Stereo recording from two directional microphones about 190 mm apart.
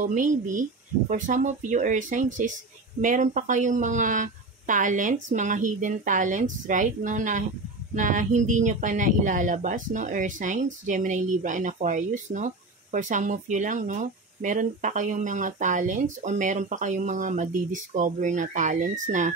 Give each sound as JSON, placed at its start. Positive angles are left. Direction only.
{"t": 0.0, "sound": "speech", "side_deg": -40}